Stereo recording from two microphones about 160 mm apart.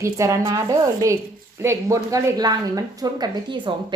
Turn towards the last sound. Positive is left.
turn(degrees=-30)  # may be behind; listen again after turning